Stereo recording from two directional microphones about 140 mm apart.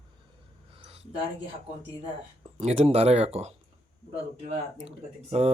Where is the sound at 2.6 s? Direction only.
50° right (ahead or behind).